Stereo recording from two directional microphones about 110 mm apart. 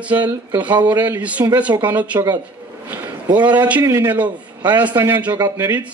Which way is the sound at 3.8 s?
25° right (ahead or behind).